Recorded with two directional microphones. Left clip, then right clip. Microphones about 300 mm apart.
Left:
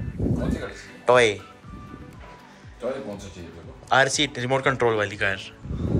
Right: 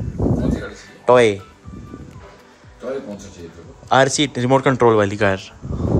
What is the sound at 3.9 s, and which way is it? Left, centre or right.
A man's voice, centre.